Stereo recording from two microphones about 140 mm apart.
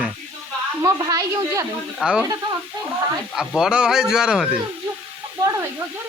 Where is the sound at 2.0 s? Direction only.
5° right (ahead or behind).